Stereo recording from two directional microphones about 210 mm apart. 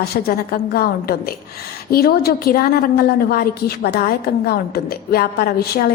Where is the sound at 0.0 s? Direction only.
45° left (ahead or behind).